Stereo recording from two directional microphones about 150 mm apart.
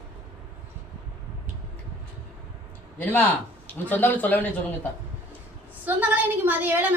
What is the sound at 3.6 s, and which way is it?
Speech, 15° left (ahead or behind).